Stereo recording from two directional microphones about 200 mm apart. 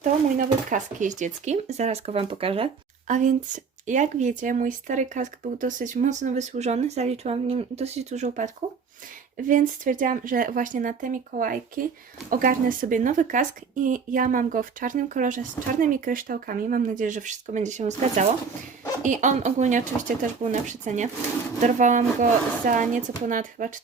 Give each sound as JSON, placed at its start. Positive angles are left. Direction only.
{"t": 0.0, "sound": "speech", "side_deg": -40}
{"t": 3.1, "sound": "speech", "side_deg": -40}
{"t": 9.5, "sound": "speech", "side_deg": -40}